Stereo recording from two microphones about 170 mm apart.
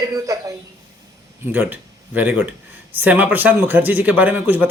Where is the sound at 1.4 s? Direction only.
10° right (ahead or behind).